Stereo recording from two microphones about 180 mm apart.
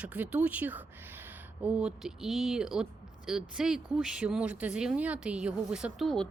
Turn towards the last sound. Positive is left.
turn(degrees=5)  # may be behind; listen again after turning